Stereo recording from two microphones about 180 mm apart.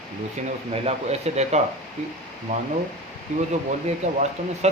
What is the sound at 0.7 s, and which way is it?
Speech, 35° right (ahead or behind).